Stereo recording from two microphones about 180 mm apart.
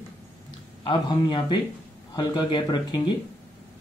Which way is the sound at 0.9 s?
25° left (ahead or behind).